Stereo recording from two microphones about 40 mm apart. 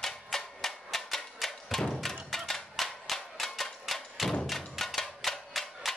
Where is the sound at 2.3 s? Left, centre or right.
Centre.